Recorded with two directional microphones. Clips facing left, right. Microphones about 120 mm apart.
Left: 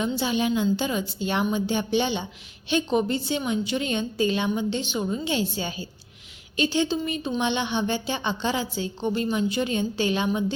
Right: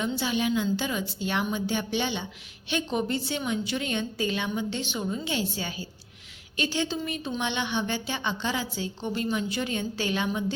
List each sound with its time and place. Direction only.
0.0 s a woman's voice: 30° left (ahead or behind)